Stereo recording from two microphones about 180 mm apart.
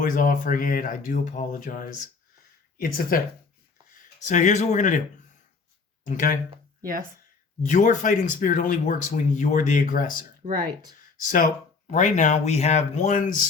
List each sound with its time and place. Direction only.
0.0 s speech: 50° left (ahead or behind)
6.1 s speech: 45° left (ahead or behind)
7.6 s speech: 45° left (ahead or behind)
11.3 s speech: 45° left (ahead or behind)